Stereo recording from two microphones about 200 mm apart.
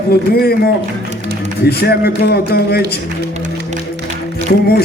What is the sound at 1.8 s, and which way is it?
A man's voice, 55° left (ahead or behind).